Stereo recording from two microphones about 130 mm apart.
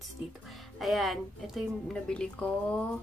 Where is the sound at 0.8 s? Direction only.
Centre (ahead or behind).